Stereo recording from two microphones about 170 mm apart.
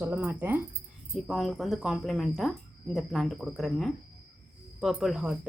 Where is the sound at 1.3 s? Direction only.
Centre (ahead or behind).